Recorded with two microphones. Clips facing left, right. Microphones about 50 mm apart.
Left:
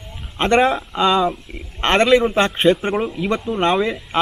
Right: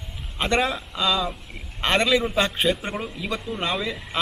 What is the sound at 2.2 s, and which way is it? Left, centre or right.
Speech, centre.